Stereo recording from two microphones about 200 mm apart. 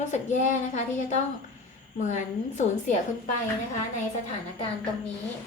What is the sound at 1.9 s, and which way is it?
A woman's voice, 40° left (ahead or behind).